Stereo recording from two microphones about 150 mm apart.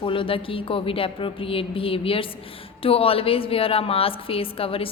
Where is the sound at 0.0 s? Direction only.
35° left (ahead or behind).